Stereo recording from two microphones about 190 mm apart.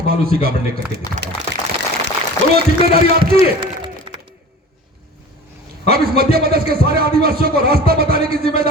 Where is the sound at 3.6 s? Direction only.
25° right (ahead or behind).